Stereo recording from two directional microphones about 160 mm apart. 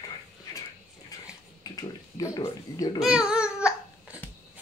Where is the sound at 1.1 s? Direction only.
20° left (ahead or behind).